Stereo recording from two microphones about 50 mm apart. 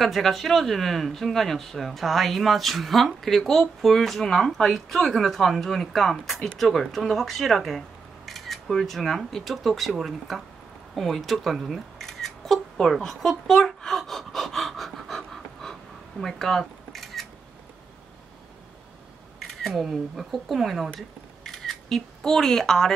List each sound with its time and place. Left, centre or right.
0.0 s speech: centre
12.9 s gasp: centre
16.2 s speech: centre
16.9 s a sound: centre
19.5 s speech: centre
21.5 s camera: centre